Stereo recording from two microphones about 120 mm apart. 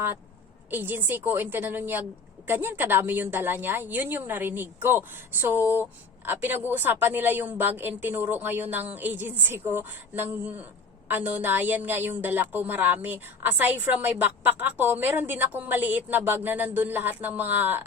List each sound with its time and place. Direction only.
0.7 s a woman's voice: 15° right (ahead or behind)